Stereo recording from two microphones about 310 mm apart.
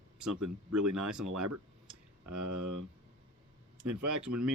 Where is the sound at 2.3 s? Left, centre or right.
Right.